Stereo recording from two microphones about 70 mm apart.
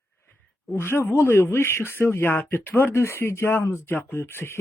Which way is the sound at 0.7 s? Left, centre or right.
Left.